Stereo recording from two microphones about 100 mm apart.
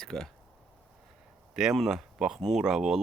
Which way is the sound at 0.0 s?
5° left (ahead or behind).